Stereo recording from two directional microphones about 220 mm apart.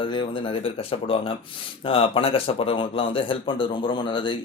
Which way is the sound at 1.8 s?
25° left (ahead or behind).